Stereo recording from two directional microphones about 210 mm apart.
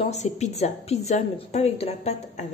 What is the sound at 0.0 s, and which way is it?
A woman's voice, 30° left (ahead or behind).